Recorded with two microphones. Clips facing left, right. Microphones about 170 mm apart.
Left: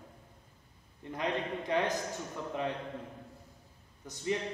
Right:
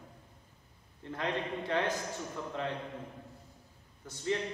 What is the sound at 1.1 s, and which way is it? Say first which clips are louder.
Speech: left 1 dB; 15° left (ahead or behind).